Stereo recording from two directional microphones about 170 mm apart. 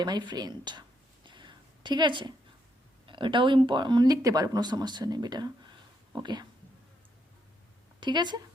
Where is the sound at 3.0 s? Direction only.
30° right (ahead or behind).